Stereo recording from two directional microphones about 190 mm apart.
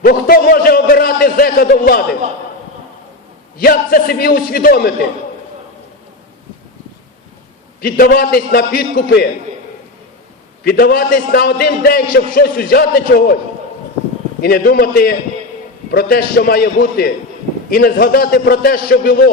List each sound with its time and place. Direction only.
0.0 s a sound: 50° left (ahead or behind)
3.6 s a man's voice: 50° left (ahead or behind)
7.8 s a man's voice: 50° left (ahead or behind)
10.6 s a man's voice: 55° left (ahead or behind)
14.4 s a man's voice: 50° left (ahead or behind)